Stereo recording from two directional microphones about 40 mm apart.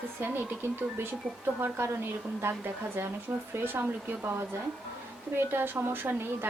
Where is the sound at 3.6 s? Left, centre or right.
Right.